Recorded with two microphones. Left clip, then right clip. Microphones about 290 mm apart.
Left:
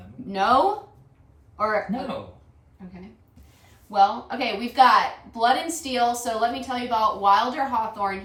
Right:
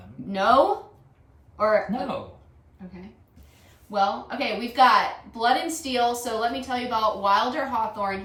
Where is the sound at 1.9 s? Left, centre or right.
Centre.